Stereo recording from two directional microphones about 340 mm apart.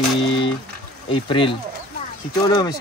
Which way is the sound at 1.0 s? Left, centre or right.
Centre.